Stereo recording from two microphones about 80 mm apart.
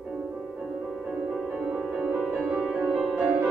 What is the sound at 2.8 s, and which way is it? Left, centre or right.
Music, centre.